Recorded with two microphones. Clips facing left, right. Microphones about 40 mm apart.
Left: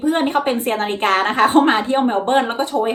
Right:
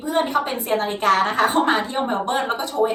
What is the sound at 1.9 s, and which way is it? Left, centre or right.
Speech, left.